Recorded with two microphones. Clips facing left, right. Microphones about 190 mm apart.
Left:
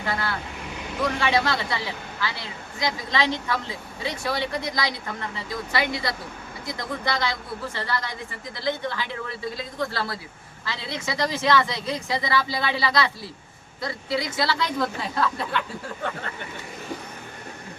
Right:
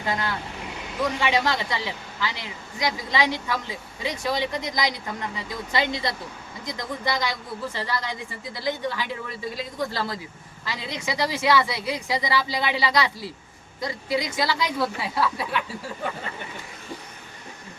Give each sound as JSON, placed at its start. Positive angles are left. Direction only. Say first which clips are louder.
{"t": 0.0, "sound": "a woman's voice", "louder": "right 1 dB", "side_deg": -15}